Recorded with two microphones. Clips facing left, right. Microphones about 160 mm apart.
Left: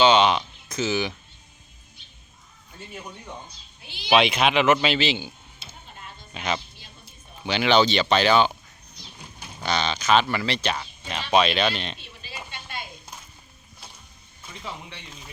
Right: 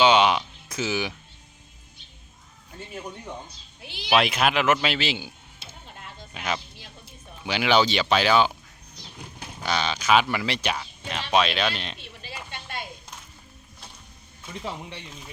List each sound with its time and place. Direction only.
0.0 s speech: 10° right (ahead or behind)
3.8 s speech: 80° right
4.1 s speech: centre (ahead or behind)
6.3 s speech: 5° right (ahead or behind)
9.6 s speech: 5° right (ahead or behind)
11.1 s speech: centre (ahead or behind)
12.2 s a sound: 65° right (ahead or behind)